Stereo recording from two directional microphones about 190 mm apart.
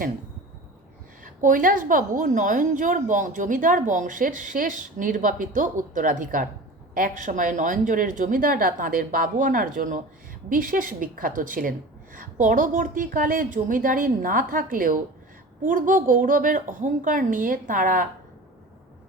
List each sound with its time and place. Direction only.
1.2 s a woman's voice: 45° right (ahead or behind)